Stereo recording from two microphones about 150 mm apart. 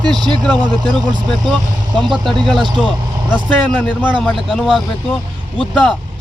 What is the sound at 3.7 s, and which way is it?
Speech, 10° left (ahead or behind).